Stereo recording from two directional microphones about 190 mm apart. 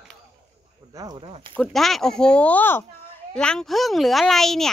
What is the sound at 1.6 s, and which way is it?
A child's voice, centre (ahead or behind).